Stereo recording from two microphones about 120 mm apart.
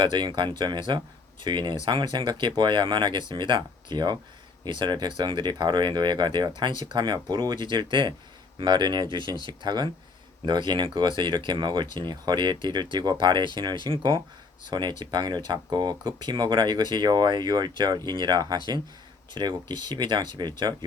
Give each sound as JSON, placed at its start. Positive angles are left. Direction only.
{"t": 0.0, "sound": "speech", "side_deg": -40}